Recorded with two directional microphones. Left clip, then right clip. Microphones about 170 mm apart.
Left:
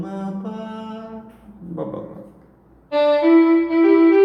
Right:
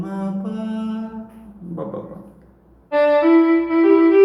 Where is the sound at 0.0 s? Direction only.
5° right (ahead or behind).